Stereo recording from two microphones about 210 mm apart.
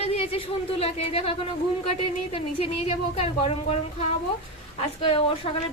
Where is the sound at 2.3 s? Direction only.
30° left (ahead or behind).